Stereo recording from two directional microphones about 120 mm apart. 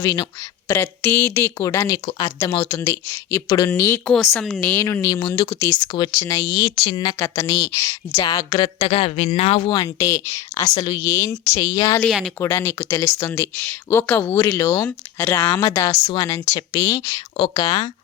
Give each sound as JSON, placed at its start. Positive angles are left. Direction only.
{"t": 0.0, "sound": "speech", "side_deg": 30}
{"t": 0.7, "sound": "speech", "side_deg": 15}
{"t": 4.4, "sound": "a woman's voice", "side_deg": 5}
{"t": 4.7, "sound": "speech", "side_deg": 25}
{"t": 5.5, "sound": "speech", "side_deg": 20}
{"t": 5.9, "sound": "speech", "side_deg": 35}
{"t": 7.2, "sound": "speech", "side_deg": 25}
{"t": 8.2, "sound": "speech", "side_deg": 40}
{"t": 8.8, "sound": "speech", "side_deg": 55}
{"t": 9.6, "sound": "speech", "side_deg": 35}
{"t": 12.0, "sound": "a woman's voice", "side_deg": 0}
{"t": 12.4, "sound": "speech", "side_deg": 20}
{"t": 16.6, "sound": "speech", "side_deg": 35}
{"t": 17.6, "sound": "speech", "side_deg": 40}